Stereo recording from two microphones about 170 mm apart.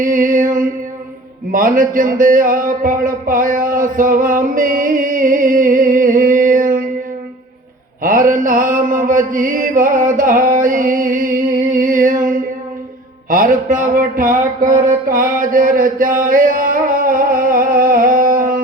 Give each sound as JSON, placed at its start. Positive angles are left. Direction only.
{"t": 0.0, "sound": "music", "side_deg": -50}
{"t": 1.5, "sound": "speech", "side_deg": -50}
{"t": 8.0, "sound": "mantra", "side_deg": -50}
{"t": 11.8, "sound": "music", "side_deg": -50}
{"t": 13.3, "sound": "a sound", "side_deg": -55}